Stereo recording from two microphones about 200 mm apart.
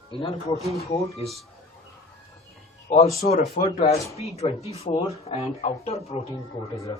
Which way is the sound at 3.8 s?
35° left (ahead or behind).